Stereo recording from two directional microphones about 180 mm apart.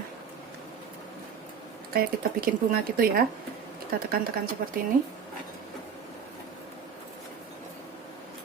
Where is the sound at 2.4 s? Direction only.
55° right (ahead or behind).